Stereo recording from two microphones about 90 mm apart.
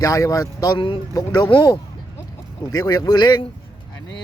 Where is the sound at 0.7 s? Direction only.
65° left (ahead or behind).